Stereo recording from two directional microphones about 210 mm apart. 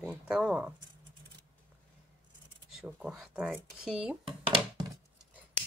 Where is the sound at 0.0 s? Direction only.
Centre (ahead or behind).